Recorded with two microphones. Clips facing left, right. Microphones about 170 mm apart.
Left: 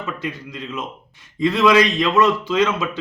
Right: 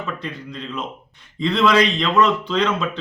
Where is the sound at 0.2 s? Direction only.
5° left (ahead or behind).